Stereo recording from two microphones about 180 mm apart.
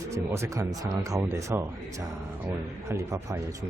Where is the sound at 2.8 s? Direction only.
15° right (ahead or behind).